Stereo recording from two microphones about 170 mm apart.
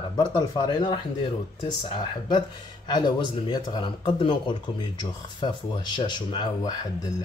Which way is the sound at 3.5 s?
25° left (ahead or behind).